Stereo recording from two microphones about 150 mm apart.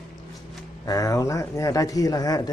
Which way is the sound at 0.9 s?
20° left (ahead or behind).